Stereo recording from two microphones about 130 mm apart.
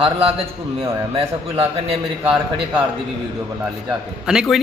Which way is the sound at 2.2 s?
10° right (ahead or behind).